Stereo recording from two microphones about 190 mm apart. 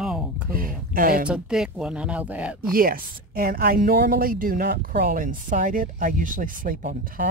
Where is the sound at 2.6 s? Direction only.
50° right (ahead or behind).